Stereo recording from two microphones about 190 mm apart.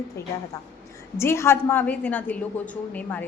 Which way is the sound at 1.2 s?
15° left (ahead or behind).